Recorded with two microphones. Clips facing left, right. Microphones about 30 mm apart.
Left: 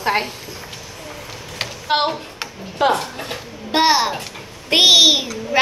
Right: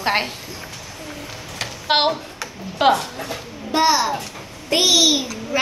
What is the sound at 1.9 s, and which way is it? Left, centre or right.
A child's voice, right.